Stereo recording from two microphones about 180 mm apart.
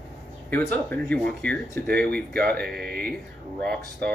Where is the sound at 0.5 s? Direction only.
10° left (ahead or behind).